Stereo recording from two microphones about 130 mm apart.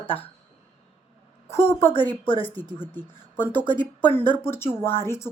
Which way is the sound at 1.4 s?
20° left (ahead or behind).